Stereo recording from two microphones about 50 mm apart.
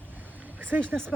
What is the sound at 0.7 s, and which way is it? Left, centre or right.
Speech, right.